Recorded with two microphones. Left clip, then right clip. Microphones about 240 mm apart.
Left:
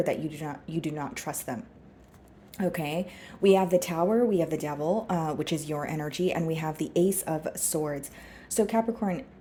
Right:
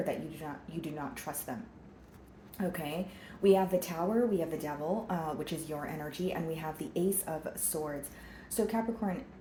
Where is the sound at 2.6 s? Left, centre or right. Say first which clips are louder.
Left 6 dB; left.